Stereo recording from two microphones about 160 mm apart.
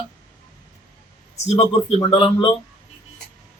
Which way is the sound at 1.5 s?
40° left (ahead or behind).